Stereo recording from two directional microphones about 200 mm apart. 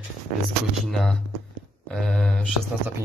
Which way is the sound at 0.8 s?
Centre (ahead or behind).